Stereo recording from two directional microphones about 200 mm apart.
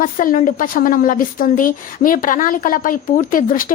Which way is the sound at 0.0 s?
45° left (ahead or behind).